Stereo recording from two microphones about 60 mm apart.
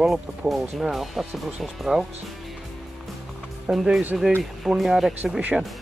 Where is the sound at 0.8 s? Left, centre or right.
Centre.